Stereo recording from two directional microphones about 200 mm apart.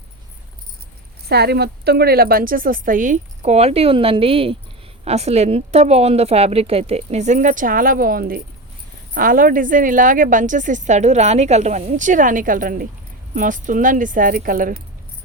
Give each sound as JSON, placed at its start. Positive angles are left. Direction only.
{"t": 1.3, "sound": "a woman's voice", "side_deg": -55}